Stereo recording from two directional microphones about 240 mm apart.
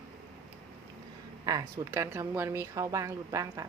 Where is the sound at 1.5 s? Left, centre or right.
Centre.